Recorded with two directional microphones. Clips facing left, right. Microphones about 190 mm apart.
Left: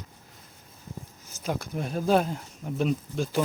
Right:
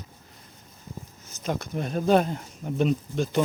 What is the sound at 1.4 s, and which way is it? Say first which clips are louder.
Speech: right 2 dB; 5° left (ahead or behind).